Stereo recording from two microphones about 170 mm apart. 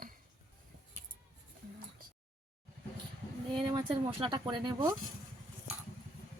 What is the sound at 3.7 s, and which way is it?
Speech, 25° right (ahead or behind).